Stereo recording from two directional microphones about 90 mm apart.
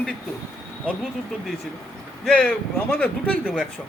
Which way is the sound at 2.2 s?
10° left (ahead or behind).